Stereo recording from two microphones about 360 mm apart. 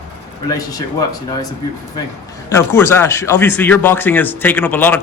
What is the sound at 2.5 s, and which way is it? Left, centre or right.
Speech, centre.